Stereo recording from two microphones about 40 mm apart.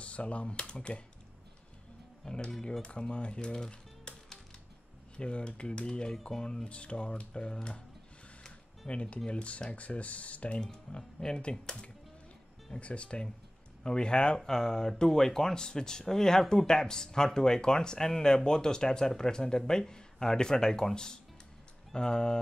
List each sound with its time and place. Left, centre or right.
0.0 s speech: left
2.2 s speech: left
4.1 s music: left
5.1 s speech: left
6.7 s speech: left
10.6 s speech: centre
12.7 s speech: left